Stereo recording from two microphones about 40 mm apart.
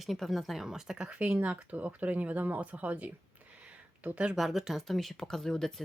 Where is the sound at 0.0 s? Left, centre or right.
Centre.